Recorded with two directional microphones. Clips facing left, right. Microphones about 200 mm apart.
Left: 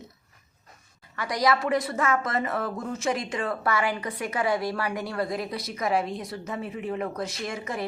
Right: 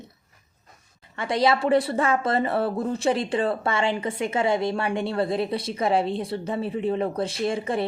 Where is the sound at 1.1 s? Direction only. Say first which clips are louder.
Right 3 dB; 25° right (ahead or behind).